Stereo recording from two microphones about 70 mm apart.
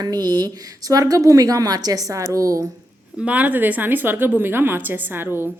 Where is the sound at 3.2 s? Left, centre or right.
Right.